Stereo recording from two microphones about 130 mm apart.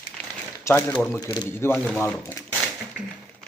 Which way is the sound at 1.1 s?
30° left (ahead or behind).